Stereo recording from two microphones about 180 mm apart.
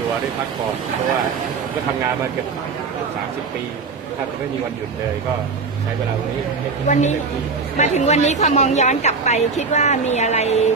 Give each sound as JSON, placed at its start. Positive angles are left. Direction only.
{"t": 6.9, "sound": "a woman's voice", "side_deg": 40}